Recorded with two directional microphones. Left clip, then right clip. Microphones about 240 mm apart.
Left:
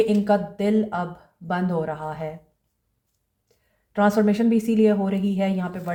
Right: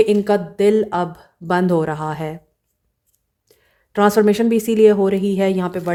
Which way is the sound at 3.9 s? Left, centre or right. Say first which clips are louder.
Right 6 dB; right.